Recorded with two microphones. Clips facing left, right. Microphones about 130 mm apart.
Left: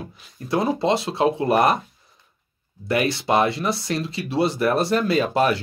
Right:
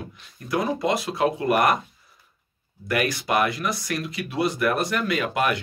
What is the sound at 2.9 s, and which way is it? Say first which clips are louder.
Speech: left 3 dB; 30° left (ahead or behind).